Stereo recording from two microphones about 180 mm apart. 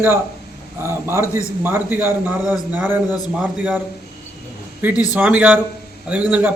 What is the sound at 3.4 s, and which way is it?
Speech, 10° right (ahead or behind).